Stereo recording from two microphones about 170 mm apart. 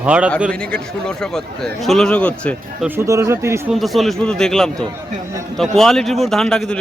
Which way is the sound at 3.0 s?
15° right (ahead or behind).